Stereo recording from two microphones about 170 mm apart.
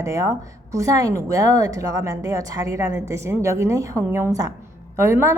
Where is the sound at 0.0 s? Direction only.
20° right (ahead or behind).